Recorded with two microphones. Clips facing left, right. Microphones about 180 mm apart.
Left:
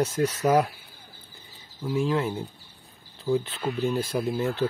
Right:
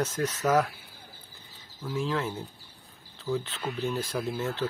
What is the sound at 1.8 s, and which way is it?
Speech, 15° left (ahead or behind).